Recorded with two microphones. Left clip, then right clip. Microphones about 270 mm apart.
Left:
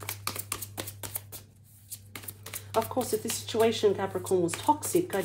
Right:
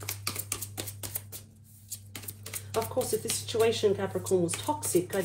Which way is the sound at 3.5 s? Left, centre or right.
Left.